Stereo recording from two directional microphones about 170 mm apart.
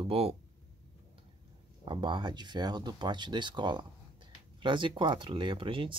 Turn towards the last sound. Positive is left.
turn(degrees=-30)  # may be behind; listen again after turning